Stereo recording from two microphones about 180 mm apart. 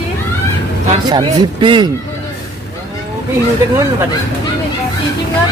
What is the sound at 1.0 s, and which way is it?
Speech, 25° right (ahead or behind).